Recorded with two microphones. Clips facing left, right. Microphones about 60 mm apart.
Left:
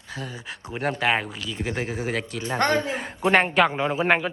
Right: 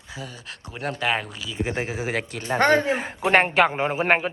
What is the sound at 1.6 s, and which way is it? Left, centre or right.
Speech, centre.